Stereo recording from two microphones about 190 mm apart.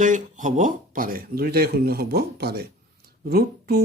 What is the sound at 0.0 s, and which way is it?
Speech, 40° right (ahead or behind).